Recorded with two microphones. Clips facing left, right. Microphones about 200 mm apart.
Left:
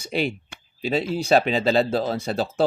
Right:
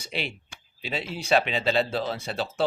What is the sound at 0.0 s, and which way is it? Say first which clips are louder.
Speech: left 8 dB; 45° left (ahead or behind).